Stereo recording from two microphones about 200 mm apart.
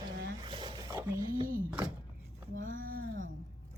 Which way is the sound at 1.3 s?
45° right (ahead or behind).